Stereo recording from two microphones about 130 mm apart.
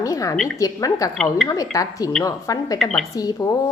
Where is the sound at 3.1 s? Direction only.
25° left (ahead or behind).